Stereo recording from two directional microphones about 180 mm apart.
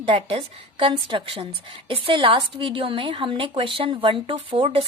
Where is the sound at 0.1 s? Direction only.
30° right (ahead or behind).